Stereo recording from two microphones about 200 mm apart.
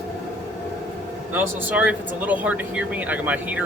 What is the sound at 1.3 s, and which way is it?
Speech, 10° right (ahead or behind).